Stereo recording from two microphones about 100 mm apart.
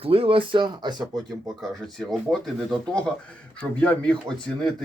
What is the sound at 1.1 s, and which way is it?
Speech, centre (ahead or behind).